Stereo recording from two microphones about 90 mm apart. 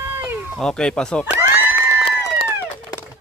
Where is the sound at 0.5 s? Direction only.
10° left (ahead or behind).